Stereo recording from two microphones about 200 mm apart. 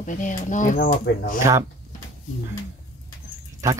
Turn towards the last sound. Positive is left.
turn(degrees=-15)  # may be behind; listen again after turning